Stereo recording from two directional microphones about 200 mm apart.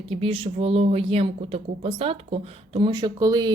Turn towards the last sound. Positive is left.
turn(degrees=-20)  # may be behind; listen again after turning